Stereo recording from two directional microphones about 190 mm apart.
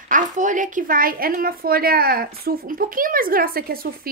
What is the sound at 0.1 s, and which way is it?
A woman's voice, 40° right (ahead or behind).